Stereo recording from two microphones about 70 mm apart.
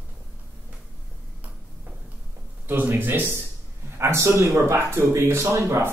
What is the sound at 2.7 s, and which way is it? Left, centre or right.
Speech, right.